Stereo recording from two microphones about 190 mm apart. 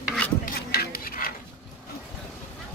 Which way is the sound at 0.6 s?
55° left (ahead or behind).